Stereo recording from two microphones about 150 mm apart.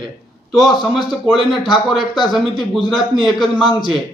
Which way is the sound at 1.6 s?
30° left (ahead or behind).